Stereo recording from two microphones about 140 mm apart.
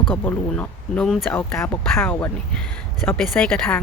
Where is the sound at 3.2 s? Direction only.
5° left (ahead or behind).